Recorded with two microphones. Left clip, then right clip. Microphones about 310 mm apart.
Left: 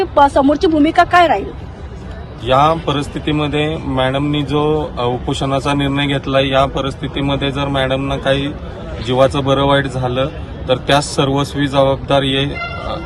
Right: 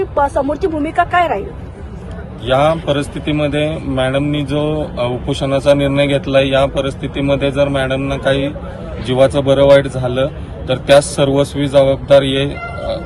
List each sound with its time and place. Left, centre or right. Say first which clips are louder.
0.0 s speech: left 4 dB; left
2.5 s a man's voice: even; centre